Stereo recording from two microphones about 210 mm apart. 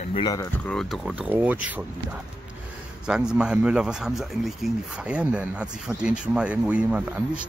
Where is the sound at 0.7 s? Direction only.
Centre (ahead or behind).